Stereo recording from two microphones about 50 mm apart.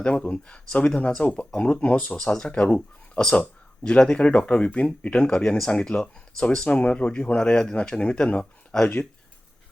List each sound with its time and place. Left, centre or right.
0.0 s speech: left